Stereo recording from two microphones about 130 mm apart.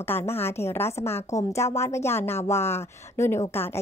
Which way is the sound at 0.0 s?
20° left (ahead or behind).